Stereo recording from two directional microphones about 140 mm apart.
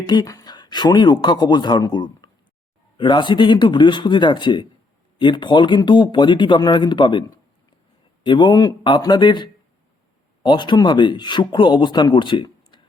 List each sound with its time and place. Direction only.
0.0 s speech: 30° left (ahead or behind)